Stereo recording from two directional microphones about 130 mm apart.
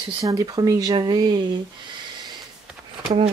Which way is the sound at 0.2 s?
30° right (ahead or behind).